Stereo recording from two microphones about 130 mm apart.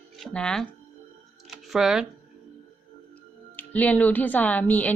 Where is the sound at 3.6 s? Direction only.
15° left (ahead or behind).